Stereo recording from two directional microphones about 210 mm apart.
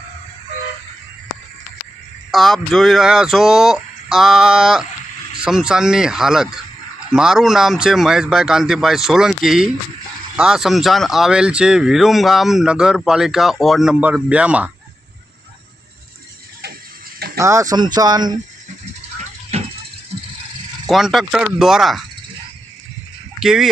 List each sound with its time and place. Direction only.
2.3 s speech: centre (ahead or behind)
17.3 s speech: 15° right (ahead or behind)
19.2 s a sound: 30° right (ahead or behind)
20.8 s speech: centre (ahead or behind)
23.4 s speech: centre (ahead or behind)